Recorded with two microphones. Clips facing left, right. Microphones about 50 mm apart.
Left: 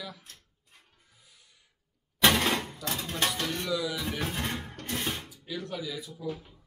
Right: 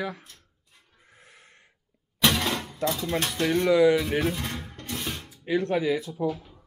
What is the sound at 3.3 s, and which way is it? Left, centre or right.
Speech, right.